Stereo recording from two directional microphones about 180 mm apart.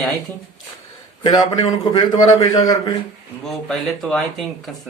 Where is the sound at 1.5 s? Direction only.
20° left (ahead or behind).